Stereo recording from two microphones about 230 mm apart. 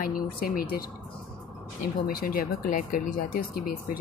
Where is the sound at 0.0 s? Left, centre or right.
Left.